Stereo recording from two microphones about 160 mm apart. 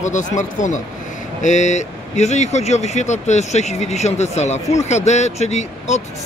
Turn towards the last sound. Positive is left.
turn(degrees=45)  # may be behind; listen again after turning